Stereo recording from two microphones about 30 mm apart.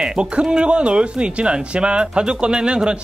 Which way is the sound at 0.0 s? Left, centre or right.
Right.